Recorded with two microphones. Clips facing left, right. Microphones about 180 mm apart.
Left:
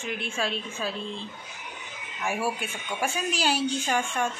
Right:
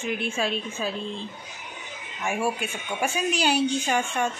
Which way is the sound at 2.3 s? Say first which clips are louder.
Right 2 dB; 5° left (ahead or behind).